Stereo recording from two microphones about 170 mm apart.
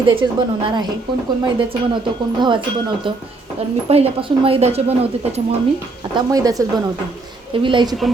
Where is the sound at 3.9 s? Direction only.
35° right (ahead or behind).